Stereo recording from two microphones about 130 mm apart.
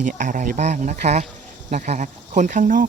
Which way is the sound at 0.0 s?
80° right.